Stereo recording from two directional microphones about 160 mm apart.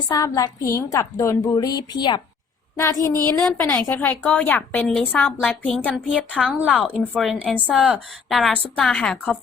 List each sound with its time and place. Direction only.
0.1 s a woman's voice: 20° left (ahead or behind)
2.7 s a woman's voice: 15° left (ahead or behind)
6.3 s a woman's voice: 5° right (ahead or behind)